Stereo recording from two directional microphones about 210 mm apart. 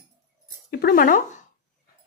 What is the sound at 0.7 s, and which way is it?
Speech, 50° left (ahead or behind).